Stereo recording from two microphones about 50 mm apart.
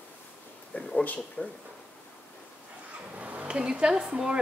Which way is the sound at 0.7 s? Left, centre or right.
Left.